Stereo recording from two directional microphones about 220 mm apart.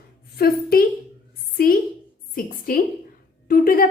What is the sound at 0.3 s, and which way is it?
A woman's voice, 45° left (ahead or behind).